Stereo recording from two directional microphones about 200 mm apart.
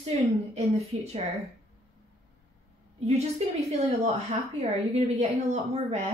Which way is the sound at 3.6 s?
35° right (ahead or behind).